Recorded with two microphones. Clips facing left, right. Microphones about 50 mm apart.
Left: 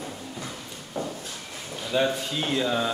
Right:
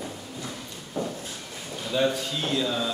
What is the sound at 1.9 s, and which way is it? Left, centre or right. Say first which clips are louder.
Speech: even; centre.